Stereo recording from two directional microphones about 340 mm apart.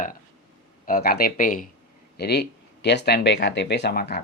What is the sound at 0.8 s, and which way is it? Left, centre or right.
Speech, left.